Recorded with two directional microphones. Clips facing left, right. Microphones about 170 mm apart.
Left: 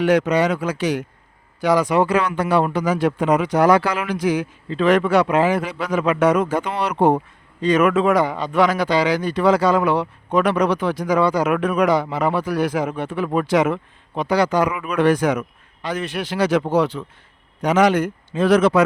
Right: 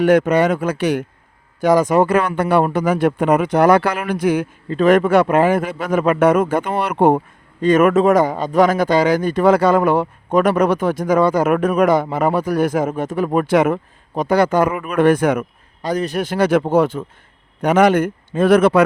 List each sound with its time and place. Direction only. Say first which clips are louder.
0.0 s a man's voice: right 3 dB; 50° right (ahead or behind)
15.8 s a man's voice: right 5 dB; 40° right (ahead or behind); by 18.8 s 55° right (ahead or behind)